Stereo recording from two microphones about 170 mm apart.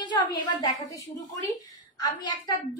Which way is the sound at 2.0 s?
25° left (ahead or behind).